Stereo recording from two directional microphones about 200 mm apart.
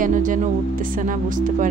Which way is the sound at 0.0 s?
40° right (ahead or behind).